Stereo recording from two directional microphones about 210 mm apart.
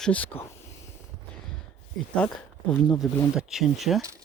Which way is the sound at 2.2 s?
5° left (ahead or behind).